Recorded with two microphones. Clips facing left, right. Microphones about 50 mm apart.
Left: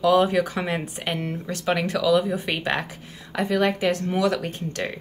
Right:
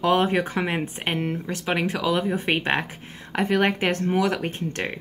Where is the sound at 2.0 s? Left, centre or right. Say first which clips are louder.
Left 3 dB; right.